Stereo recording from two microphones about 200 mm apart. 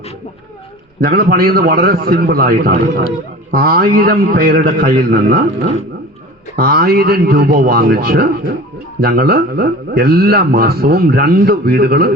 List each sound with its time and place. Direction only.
1.0 s a man's voice: 50° right (ahead or behind)
6.6 s a man's voice: 50° right (ahead or behind)